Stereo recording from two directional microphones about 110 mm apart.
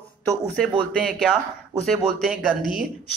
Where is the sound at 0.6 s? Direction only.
5° left (ahead or behind).